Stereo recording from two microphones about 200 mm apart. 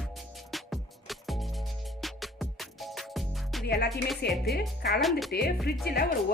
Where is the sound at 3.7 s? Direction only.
55° left (ahead or behind).